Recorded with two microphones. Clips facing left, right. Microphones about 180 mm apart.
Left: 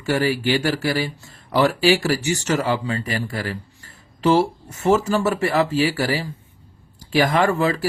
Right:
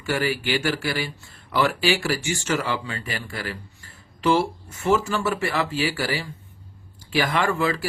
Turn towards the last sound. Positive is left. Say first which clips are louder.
# left 4 dB
turn(degrees=40)  # may be behind; listen again after turning